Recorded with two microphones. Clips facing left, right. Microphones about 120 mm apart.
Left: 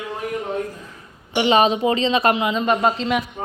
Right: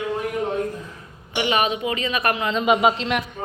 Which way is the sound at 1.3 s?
30° left (ahead or behind).